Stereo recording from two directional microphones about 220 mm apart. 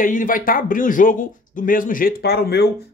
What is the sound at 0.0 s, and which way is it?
Speech, 40° left (ahead or behind).